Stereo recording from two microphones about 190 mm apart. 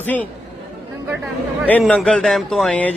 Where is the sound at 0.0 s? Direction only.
10° left (ahead or behind).